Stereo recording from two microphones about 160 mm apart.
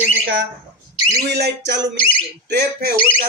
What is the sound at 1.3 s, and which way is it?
Speech, 90° right.